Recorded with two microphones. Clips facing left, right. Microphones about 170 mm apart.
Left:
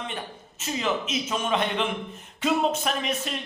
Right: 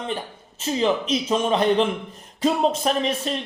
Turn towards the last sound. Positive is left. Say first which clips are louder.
# right 5 dB
turn(degrees=-30)  # may be behind; listen again after turning